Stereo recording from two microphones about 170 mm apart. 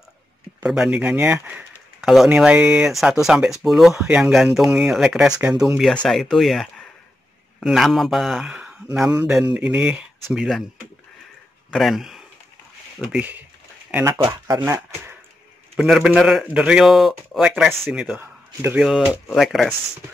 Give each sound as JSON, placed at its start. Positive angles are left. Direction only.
{"t": 0.6, "sound": "speech", "side_deg": -5}
{"t": 11.7, "sound": "speech", "side_deg": 0}
{"t": 14.1, "sound": "speech", "side_deg": -20}
{"t": 15.7, "sound": "speech", "side_deg": 0}